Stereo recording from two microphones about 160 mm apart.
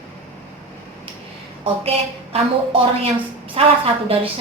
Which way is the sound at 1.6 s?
40° right (ahead or behind).